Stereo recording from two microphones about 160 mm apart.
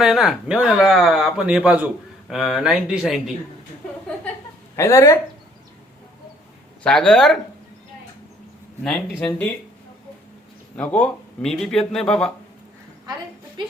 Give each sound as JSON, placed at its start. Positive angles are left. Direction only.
{"t": 0.0, "sound": "speech", "side_deg": 0}
{"t": 4.8, "sound": "speech", "side_deg": 20}
{"t": 6.8, "sound": "speech", "side_deg": 5}
{"t": 8.8, "sound": "speech", "side_deg": 0}
{"t": 10.8, "sound": "speech", "side_deg": 10}